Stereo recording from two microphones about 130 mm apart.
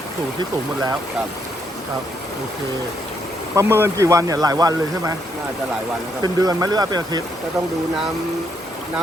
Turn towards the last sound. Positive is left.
turn(degrees=-30)  # may be behind; listen again after turning